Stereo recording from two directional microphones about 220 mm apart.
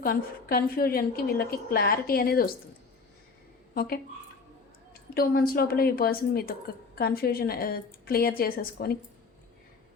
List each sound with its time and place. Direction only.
0.0 s a woman's voice: 45° left (ahead or behind)
3.8 s a woman's voice: 45° left (ahead or behind)
5.1 s a woman's voice: 40° left (ahead or behind)